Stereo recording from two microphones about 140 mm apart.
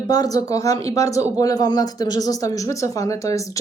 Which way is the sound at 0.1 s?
25° left (ahead or behind).